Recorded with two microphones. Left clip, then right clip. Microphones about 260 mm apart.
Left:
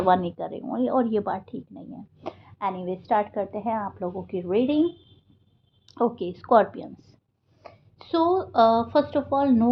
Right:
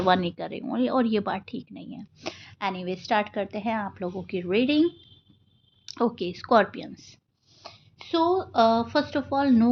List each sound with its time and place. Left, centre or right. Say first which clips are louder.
0.0 s speech: left 2 dB; right
5.9 s a woman's voice: left 1 dB; right